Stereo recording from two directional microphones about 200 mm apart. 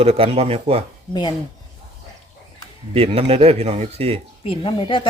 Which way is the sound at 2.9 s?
30° right (ahead or behind).